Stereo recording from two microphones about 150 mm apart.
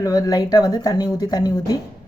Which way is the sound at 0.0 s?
25° left (ahead or behind).